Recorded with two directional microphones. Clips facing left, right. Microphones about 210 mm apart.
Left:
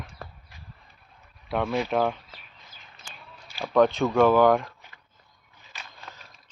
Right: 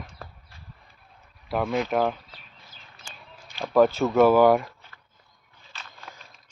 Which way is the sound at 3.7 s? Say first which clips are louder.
Right 1 dB; 5° right (ahead or behind).